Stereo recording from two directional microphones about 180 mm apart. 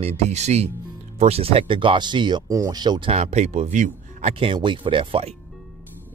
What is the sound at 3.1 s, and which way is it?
Speech, 40° right (ahead or behind).